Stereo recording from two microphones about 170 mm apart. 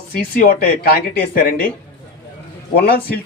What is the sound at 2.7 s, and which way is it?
Speech, 65° left (ahead or behind).